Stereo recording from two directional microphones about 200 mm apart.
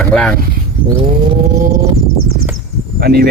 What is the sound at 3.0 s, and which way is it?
Speech, 50° right (ahead or behind).